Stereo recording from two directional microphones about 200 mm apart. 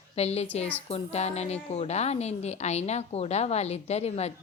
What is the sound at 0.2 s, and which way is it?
A woman's voice, 30° left (ahead or behind).